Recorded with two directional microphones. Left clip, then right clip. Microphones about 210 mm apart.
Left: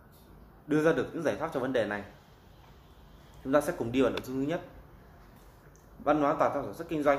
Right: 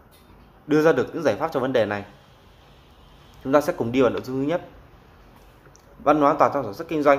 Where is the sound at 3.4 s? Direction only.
10° right (ahead or behind).